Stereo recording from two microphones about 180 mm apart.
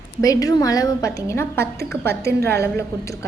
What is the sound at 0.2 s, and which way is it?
A woman's voice, 20° left (ahead or behind).